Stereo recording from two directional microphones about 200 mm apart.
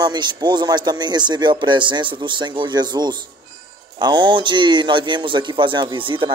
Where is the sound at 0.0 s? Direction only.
20° right (ahead or behind).